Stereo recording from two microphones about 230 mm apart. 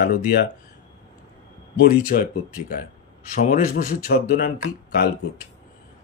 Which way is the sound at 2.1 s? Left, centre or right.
Left.